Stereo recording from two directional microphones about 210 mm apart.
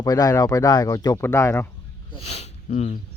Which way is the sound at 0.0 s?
15° left (ahead or behind).